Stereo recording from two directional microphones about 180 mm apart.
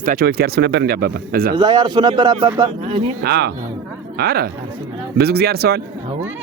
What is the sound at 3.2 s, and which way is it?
Speech, 65° right (ahead or behind).